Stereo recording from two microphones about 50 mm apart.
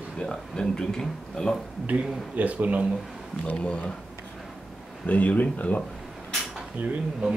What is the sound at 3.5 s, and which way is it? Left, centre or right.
Speech, left.